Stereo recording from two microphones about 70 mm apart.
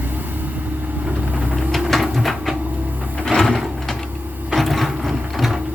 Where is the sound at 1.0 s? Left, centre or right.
Centre.